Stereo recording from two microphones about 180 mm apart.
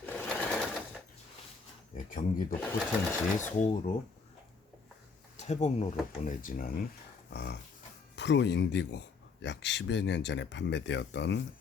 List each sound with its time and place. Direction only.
0.0 s sewing machine: 5° left (ahead or behind)
2.0 s speech: 50° left (ahead or behind)
2.6 s speech: 10° left (ahead or behind)
3.3 s speech: 45° left (ahead or behind)
5.4 s speech: 40° left (ahead or behind)
7.3 s dog: 70° left (ahead or behind)
8.1 s speech: 75° left (ahead or behind)